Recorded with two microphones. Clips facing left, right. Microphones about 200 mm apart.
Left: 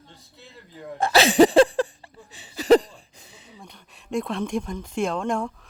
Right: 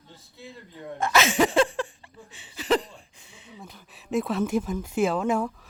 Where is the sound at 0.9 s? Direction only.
30° left (ahead or behind).